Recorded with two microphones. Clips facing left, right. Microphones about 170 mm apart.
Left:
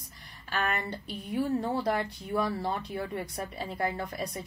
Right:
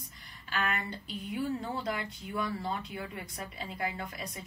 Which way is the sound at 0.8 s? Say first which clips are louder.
Left 2 dB; 35° left (ahead or behind).